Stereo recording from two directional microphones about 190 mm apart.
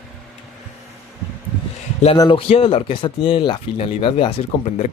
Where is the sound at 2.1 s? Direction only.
20° left (ahead or behind).